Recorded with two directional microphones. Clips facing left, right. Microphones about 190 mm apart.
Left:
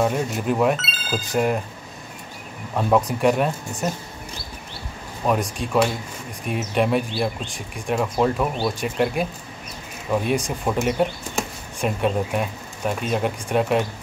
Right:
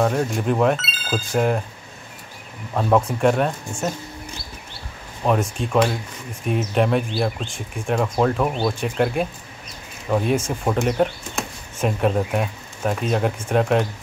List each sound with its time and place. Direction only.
0.0 s speech: 5° left (ahead or behind)
3.2 s speech: 5° left (ahead or behind)
5.2 s speech: centre (ahead or behind)